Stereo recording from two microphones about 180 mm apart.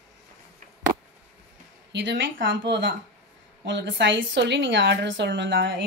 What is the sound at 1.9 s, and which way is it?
A woman's voice, 85° right.